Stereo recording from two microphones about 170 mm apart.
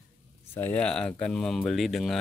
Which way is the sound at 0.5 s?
10° left (ahead or behind).